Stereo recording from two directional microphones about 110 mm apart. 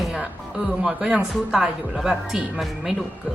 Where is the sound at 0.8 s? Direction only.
10° right (ahead or behind).